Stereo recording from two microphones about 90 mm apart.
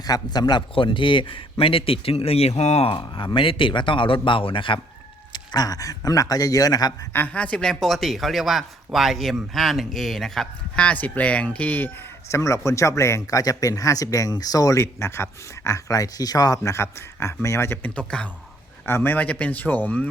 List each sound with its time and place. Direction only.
0.0 s a man's voice: 45° left (ahead or behind)
0.7 s speech: 70° left (ahead or behind); by 2.4 s 90° left
2.8 s a man's voice: 75° left (ahead or behind)
5.3 s a man's voice: 50° left (ahead or behind)
7.1 s speech: 20° left (ahead or behind)
12.3 s speech: 35° left (ahead or behind)
17.8 s a man's voice: 10° left (ahead or behind)
18.9 s speech: 25° left (ahead or behind)